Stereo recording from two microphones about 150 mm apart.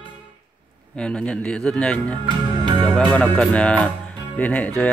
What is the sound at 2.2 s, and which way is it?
Music, 30° right (ahead or behind).